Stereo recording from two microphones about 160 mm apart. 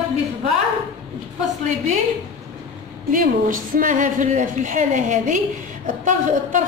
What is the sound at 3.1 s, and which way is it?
A woman's voice, 60° right (ahead or behind).